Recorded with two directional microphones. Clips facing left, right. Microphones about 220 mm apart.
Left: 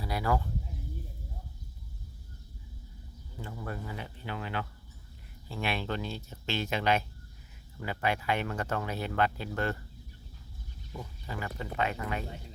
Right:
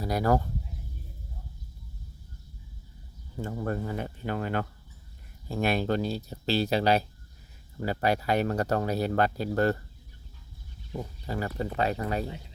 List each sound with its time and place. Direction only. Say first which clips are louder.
0.0 s speech: right 6 dB; 45° right (ahead or behind)
3.3 s speech: right 8 dB; 45° right (ahead or behind)
10.9 s speech: right 7 dB; 40° right (ahead or behind)